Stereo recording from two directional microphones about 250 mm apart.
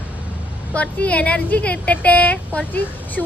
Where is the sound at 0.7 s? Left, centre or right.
Centre.